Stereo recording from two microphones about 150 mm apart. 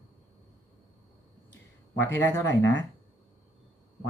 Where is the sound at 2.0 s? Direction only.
15° left (ahead or behind).